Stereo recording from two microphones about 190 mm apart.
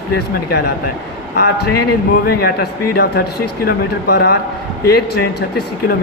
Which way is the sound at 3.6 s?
60° left (ahead or behind).